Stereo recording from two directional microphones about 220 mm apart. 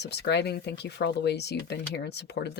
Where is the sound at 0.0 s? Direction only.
50° left (ahead or behind).